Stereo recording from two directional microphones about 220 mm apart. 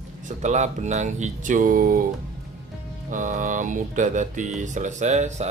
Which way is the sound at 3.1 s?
35° right (ahead or behind).